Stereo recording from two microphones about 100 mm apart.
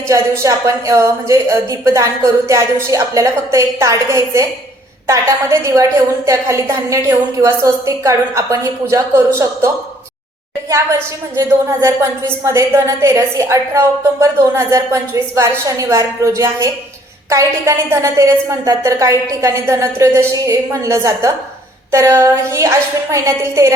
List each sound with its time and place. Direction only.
0.1 s a woman's voice: 30° right (ahead or behind)
11.3 s a woman's voice: 30° right (ahead or behind)